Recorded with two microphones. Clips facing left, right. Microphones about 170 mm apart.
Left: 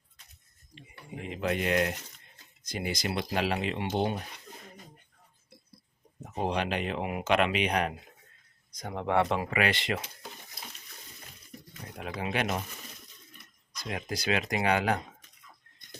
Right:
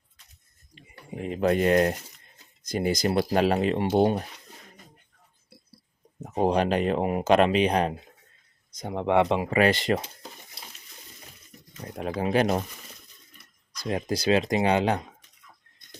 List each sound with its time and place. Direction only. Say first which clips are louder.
0.8 s speech: right 6 dB; 45° right (ahead or behind)
6.2 s speech: right 7 dB; 40° right (ahead or behind)
8.7 s speech: right 5 dB; 20° right (ahead or behind)
9.5 s speech: right 7 dB; 35° right (ahead or behind)
11.9 s speech: right 8 dB; 40° right (ahead or behind)
13.8 s speech: right 7 dB; 35° right (ahead or behind)